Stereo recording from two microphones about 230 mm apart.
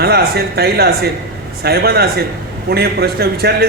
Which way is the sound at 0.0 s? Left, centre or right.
Right.